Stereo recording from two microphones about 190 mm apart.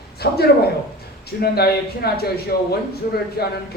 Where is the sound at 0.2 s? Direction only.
55° left (ahead or behind).